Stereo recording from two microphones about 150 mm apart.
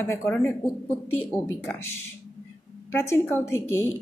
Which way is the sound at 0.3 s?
10° left (ahead or behind).